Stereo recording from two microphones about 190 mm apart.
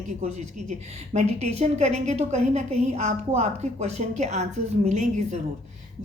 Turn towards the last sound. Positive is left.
turn(degrees=-40)  # may be behind; listen again after turning